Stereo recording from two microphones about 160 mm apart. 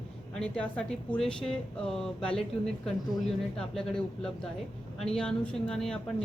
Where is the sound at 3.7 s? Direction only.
5° left (ahead or behind).